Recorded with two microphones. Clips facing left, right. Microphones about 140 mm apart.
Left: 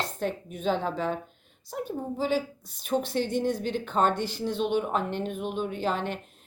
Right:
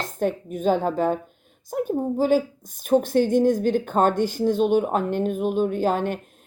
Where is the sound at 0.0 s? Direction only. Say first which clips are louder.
Right 6 dB; 50° right (ahead or behind).